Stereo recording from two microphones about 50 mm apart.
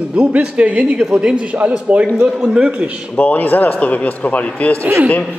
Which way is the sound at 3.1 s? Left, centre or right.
Left.